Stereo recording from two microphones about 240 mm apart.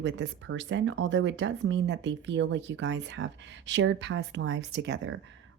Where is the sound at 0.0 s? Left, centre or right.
Right.